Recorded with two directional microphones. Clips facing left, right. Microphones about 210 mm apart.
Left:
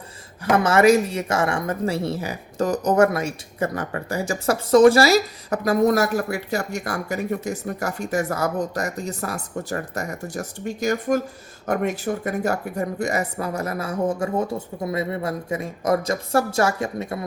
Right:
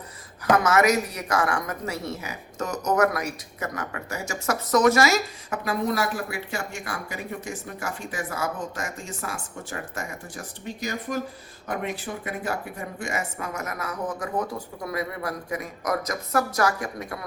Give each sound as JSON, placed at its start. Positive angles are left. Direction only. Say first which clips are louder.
{"t": 0.5, "sound": "speech", "louder": "left 5 dB", "side_deg": 30}